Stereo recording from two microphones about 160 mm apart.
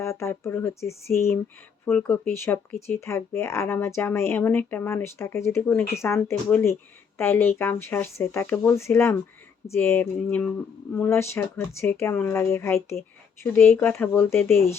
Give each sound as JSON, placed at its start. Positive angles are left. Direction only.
{"t": 0.0, "sound": "speech", "side_deg": 15}